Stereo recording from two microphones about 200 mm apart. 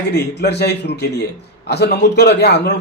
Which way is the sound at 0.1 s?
55° left (ahead or behind).